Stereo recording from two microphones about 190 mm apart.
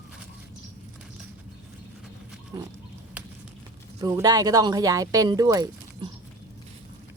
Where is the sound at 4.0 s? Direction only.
15° right (ahead or behind).